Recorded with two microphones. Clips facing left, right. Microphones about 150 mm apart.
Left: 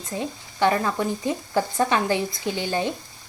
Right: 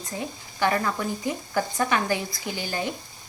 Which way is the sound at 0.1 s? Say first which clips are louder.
Left 4 dB; 20° left (ahead or behind).